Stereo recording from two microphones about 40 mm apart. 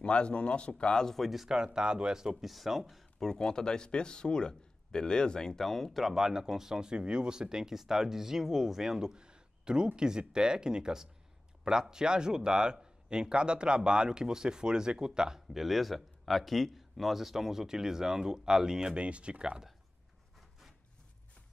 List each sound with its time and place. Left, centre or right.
0.0 s a man's voice: left
0.9 s speech: centre
1.2 s a man's voice: centre
1.5 s speech: centre
2.4 s speech: centre
3.2 s a man's voice: centre
5.5 s speech: centre
6.0 s a man's voice: centre
18.9 s speech: right